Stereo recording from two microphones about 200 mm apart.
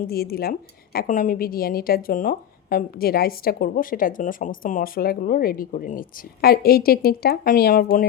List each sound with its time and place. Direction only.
0.1 s a woman's voice: 50° left (ahead or behind)